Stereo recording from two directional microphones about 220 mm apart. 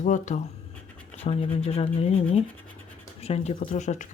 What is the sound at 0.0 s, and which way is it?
Speech, 35° left (ahead or behind).